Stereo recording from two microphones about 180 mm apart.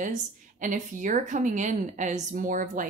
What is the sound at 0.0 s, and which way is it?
Speech, 45° right (ahead or behind).